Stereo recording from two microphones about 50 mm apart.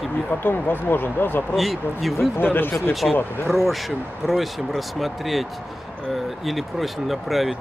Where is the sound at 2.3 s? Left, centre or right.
Left.